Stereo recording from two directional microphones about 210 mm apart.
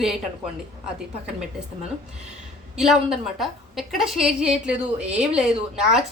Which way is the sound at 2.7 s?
Centre (ahead or behind).